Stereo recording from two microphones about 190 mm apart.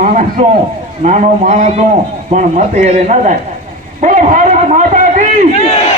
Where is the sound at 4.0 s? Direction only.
40° right (ahead or behind).